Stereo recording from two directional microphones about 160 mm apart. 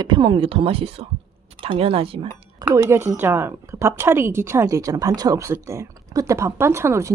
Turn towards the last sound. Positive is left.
turn(degrees=-15)  # may be behind; listen again after turning